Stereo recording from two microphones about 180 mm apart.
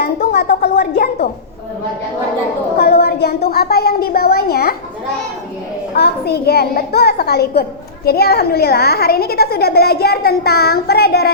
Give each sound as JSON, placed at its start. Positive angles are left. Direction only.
{"t": 0.0, "sound": "a woman's voice", "side_deg": 60}
{"t": 2.7, "sound": "a child's voice", "side_deg": 60}
{"t": 6.0, "sound": "a child's voice", "side_deg": 60}